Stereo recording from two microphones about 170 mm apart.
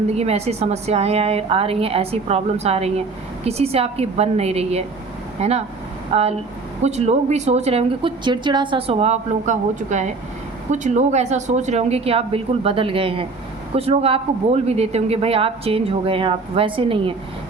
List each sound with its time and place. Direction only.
0.1 s a woman's voice: 40° right (ahead or behind)